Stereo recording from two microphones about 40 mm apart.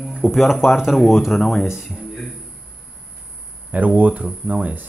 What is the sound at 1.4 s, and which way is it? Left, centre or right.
Speech, centre.